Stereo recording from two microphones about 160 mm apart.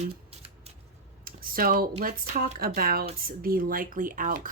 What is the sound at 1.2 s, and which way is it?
Speech, 65° right (ahead or behind).